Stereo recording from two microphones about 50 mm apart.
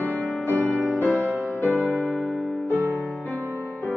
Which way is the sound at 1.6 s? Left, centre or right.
Left.